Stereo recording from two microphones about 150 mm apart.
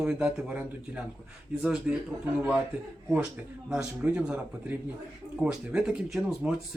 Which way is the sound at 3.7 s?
5° right (ahead or behind).